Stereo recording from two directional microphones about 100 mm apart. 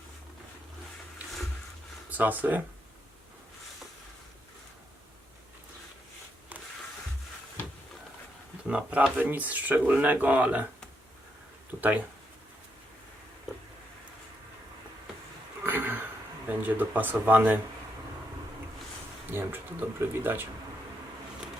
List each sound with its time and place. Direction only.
2.0 s speech: 15° right (ahead or behind)
8.6 s speech: 10° right (ahead or behind)
11.8 s speech: 15° right (ahead or behind)
15.6 s a sound: 20° right (ahead or behind)
16.6 s speech: 20° right (ahead or behind)
19.3 s speech: 20° right (ahead or behind)